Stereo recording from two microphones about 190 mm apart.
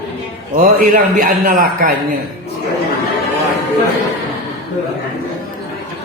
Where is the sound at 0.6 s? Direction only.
45° right (ahead or behind).